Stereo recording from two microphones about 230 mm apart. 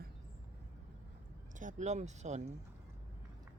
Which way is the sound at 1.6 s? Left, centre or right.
Right.